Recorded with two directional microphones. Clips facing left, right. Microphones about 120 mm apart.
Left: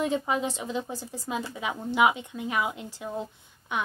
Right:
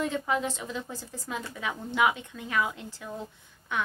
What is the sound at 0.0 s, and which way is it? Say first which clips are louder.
A woman's voice: left 2 dB; 20° left (ahead or behind).